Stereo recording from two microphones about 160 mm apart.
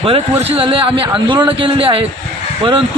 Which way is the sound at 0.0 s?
35° right (ahead or behind).